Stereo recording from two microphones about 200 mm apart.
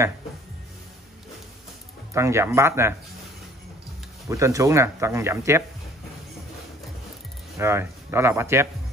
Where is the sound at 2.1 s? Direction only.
15° right (ahead or behind).